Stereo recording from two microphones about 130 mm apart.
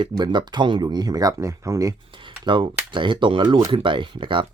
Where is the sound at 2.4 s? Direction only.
40° right (ahead or behind).